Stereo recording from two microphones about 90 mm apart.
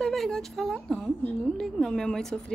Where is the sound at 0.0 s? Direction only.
5° left (ahead or behind).